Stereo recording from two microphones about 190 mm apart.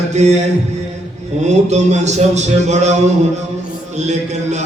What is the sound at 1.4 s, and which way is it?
Speech, 35° right (ahead or behind).